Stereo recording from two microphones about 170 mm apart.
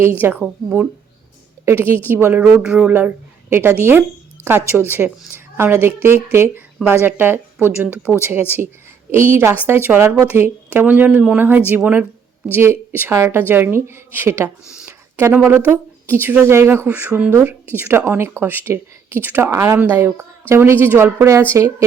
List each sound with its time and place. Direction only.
0.0 s a woman's voice: 10° right (ahead or behind)